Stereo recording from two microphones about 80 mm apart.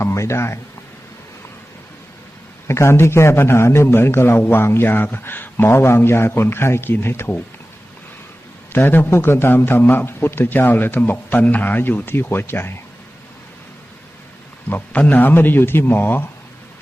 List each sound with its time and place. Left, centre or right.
0.0 s speech: left
2.6 s a man's voice: left
8.7 s a man's voice: left
14.7 s a man's voice: left